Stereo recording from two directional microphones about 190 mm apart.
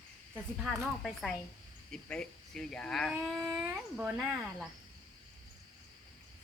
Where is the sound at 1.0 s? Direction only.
Centre (ahead or behind).